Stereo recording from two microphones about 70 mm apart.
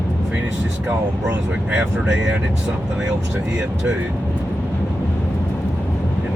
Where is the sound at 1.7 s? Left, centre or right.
Centre.